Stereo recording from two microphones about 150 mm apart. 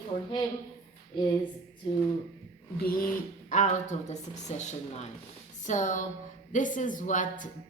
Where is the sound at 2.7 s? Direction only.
90° left.